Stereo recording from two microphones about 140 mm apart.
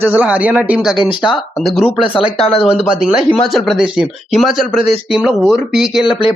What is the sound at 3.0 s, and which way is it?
A man's voice, 5° right (ahead or behind).